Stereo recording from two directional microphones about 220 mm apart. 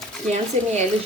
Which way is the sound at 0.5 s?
30° right (ahead or behind).